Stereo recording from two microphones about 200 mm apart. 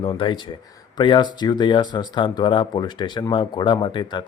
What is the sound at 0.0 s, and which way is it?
Speech, 25° left (ahead or behind).